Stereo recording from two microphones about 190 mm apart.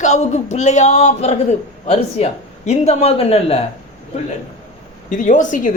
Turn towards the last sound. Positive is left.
turn(degrees=40)  # may be behind; listen again after turning